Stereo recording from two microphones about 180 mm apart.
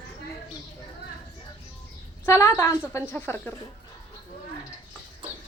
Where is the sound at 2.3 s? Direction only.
15° left (ahead or behind).